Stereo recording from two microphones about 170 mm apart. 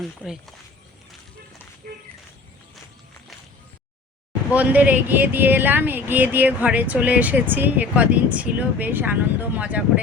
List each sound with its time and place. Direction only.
0.0 s speech: centre (ahead or behind)
1.8 s a sound: 55° right (ahead or behind)
4.5 s speech: 10° right (ahead or behind)